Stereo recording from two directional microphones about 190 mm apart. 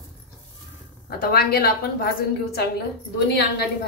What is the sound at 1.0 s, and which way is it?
Speech, 55° left (ahead or behind).